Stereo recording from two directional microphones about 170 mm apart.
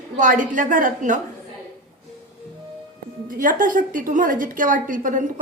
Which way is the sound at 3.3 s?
50° right (ahead or behind).